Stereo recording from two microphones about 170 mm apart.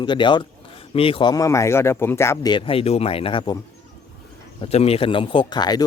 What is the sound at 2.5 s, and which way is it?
Speech, 35° left (ahead or behind).